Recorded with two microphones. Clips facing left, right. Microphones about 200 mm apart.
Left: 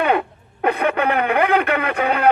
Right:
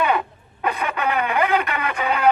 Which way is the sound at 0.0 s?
55° left (ahead or behind).